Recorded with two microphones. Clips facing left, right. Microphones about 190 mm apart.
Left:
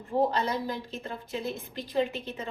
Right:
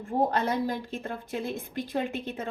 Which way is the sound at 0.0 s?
50° right (ahead or behind).